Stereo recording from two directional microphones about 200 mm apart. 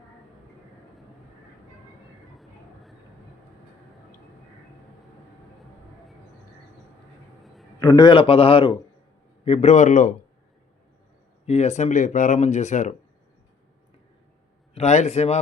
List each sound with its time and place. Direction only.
7.8 s a man's voice: 20° left (ahead or behind); by 10.2 s 40° left (ahead or behind)
11.4 s speech: 35° left (ahead or behind)
14.8 s speech: 35° left (ahead or behind)